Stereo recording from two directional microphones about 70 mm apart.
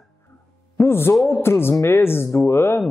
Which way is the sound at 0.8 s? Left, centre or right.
Left.